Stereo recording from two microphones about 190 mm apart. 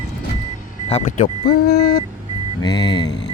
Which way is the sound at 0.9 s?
40° left (ahead or behind).